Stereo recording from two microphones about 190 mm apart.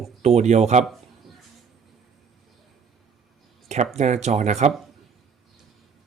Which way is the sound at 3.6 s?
40° right (ahead or behind).